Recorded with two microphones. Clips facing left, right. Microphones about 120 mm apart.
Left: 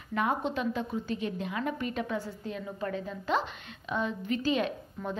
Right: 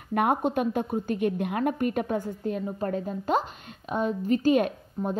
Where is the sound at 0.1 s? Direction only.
55° right (ahead or behind).